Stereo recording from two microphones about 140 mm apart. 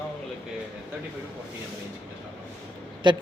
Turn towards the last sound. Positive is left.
turn(degrees=-35)  # may be behind; listen again after turning